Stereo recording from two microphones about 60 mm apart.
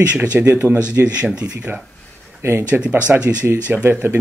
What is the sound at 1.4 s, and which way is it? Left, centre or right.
Speech, centre.